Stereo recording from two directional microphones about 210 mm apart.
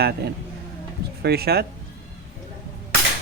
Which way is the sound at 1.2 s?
50° right (ahead or behind).